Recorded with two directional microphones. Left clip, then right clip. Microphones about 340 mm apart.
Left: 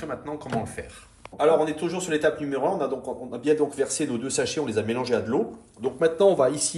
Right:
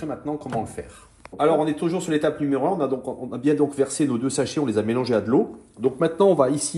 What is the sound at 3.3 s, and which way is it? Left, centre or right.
Speech, centre.